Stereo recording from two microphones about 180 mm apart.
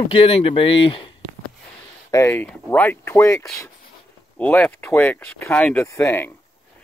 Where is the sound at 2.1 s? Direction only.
10° left (ahead or behind).